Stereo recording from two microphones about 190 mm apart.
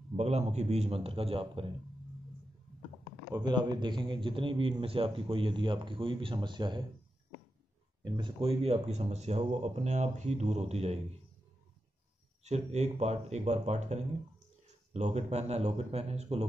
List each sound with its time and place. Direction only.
0.1 s speech: 35° right (ahead or behind)
3.3 s a man's voice: 20° right (ahead or behind)
8.0 s speech: 25° right (ahead or behind)
12.4 s speech: 35° right (ahead or behind)